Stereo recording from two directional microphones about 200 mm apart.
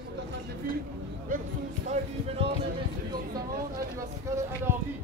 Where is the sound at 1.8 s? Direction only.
30° right (ahead or behind).